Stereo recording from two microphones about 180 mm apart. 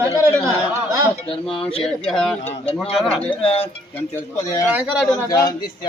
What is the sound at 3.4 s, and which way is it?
Speech, 30° left (ahead or behind).